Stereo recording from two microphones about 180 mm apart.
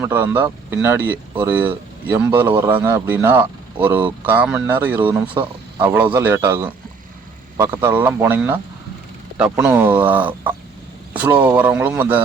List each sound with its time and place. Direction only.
0.0 s speech: 10° right (ahead or behind)
5.3 s speech: 25° right (ahead or behind)
5.8 s speech: 10° right (ahead or behind)